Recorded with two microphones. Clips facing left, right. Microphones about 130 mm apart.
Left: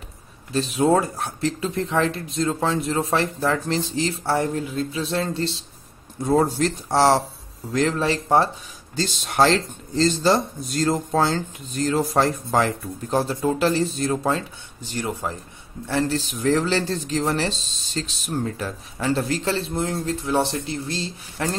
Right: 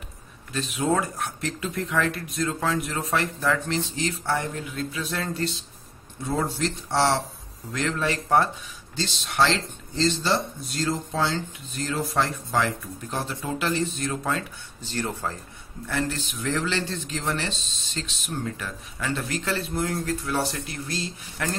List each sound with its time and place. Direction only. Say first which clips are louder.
0.5 s speech: left 6 dB; 35° left (ahead or behind)
6.2 s speech: left 7 dB; 40° left (ahead or behind)
8.9 s speech: left 4 dB; 45° left (ahead or behind)
14.8 s speech: left 2 dB; 15° left (ahead or behind)
15.9 s speech: left 5 dB; 30° left (ahead or behind)